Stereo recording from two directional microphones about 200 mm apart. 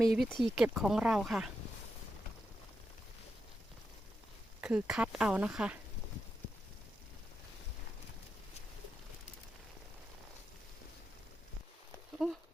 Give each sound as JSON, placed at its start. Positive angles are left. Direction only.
{"t": 0.0, "sound": "speech", "side_deg": 0}
{"t": 4.6, "sound": "speech", "side_deg": -5}
{"t": 12.2, "sound": "speech", "side_deg": -5}